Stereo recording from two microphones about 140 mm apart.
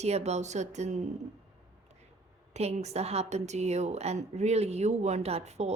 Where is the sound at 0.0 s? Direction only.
50° right (ahead or behind).